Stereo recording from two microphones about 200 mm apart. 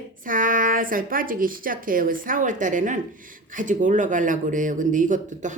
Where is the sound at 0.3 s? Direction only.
45° right (ahead or behind).